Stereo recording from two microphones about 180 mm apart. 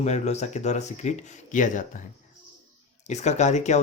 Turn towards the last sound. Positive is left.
turn(degrees=40)  # may be behind; listen again after turning